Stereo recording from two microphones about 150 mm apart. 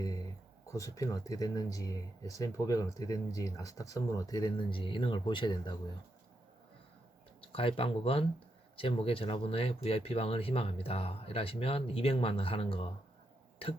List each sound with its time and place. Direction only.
0.7 s speech: 20° left (ahead or behind)
7.5 s speech: 40° left (ahead or behind)